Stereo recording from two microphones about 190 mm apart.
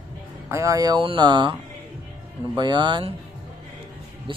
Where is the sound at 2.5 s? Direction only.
25° right (ahead or behind).